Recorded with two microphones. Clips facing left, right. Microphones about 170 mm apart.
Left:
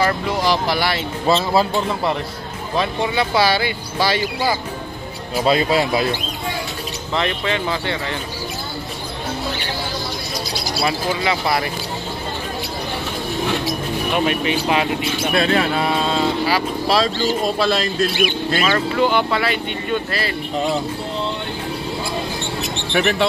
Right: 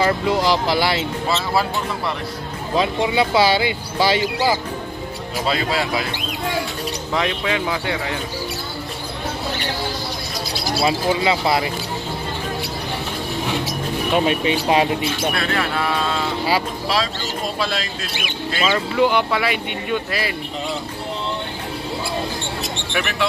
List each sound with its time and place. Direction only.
0.5 s speech: 20° right (ahead or behind)
1.3 s speech: 20° left (ahead or behind)
2.8 s speech: 20° right (ahead or behind)
5.5 s speech: 20° left (ahead or behind)
7.2 s speech: 5° right (ahead or behind)
10.8 s speech: 20° right (ahead or behind)
14.1 s speech: 25° right (ahead or behind)
15.3 s speech: 25° left (ahead or behind)
17.6 s speech: 40° left (ahead or behind)
18.7 s speech: 5° right (ahead or behind)
22.9 s speech: 30° left (ahead or behind)